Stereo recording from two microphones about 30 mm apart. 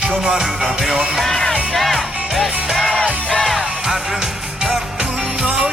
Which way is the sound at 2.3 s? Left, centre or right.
Centre.